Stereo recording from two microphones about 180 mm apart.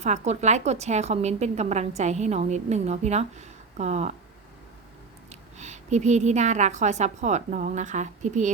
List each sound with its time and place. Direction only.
0.0 s a woman's voice: 40° right (ahead or behind)
5.3 s a woman's voice: 40° right (ahead or behind)